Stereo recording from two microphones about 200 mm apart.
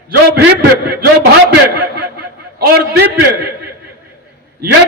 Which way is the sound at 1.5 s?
50° right (ahead or behind).